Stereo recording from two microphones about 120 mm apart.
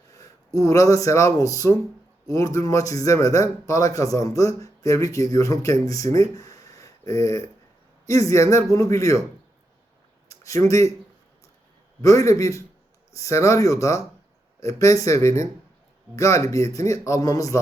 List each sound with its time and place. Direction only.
0.1 s a man's voice: 25° left (ahead or behind)
10.2 s speech: 25° left (ahead or behind)
12.0 s a man's voice: 25° left (ahead or behind)